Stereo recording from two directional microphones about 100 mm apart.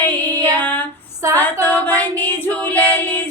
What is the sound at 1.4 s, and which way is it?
Music, 15° left (ahead or behind).